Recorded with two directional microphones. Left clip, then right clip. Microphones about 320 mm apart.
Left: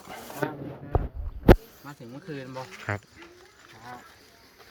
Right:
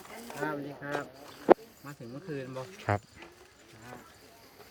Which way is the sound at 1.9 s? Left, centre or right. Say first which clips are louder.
Left 1 dB; centre.